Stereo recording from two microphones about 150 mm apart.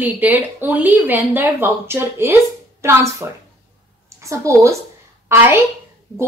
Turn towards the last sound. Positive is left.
turn(degrees=-15)  # may be behind; listen again after turning